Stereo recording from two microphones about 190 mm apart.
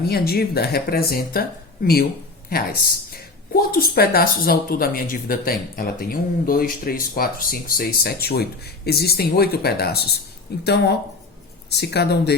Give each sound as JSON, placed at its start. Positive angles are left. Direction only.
{"t": 0.1, "sound": "speech", "side_deg": 55}
{"t": 3.1, "sound": "speech", "side_deg": 50}